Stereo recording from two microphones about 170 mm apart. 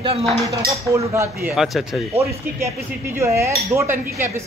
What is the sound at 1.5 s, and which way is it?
Speech, centre (ahead or behind).